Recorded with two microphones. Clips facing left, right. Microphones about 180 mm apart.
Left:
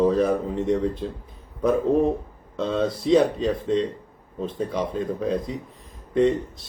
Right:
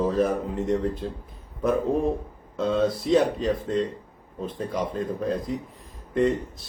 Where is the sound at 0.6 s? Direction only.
Centre (ahead or behind).